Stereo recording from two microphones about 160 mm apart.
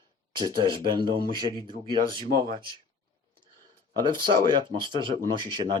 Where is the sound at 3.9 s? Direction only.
30° right (ahead or behind).